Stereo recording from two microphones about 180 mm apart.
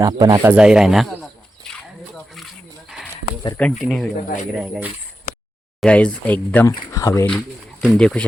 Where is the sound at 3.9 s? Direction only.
Centre (ahead or behind).